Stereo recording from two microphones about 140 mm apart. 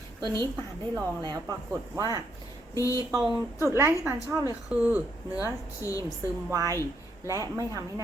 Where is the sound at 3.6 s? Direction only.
15° right (ahead or behind).